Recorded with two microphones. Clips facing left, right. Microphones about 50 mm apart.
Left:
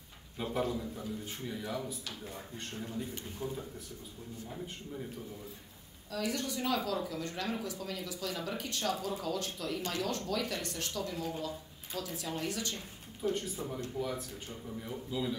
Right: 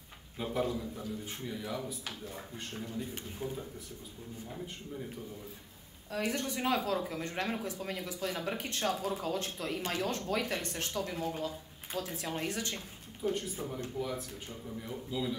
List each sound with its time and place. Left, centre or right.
0.4 s speech: centre
2.3 s speech: centre
3.4 s speech: right
6.1 s speech: right
13.9 s speech: centre